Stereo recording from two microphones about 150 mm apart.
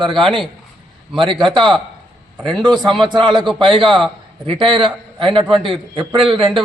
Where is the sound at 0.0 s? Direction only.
35° right (ahead or behind).